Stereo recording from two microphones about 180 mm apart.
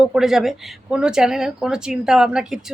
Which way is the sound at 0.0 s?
Centre (ahead or behind).